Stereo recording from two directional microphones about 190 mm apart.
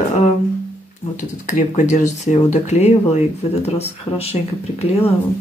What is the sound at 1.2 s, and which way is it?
Speech, 40° left (ahead or behind).